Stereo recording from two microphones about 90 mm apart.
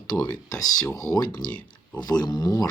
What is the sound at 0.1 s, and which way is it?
Speech, 45° left (ahead or behind).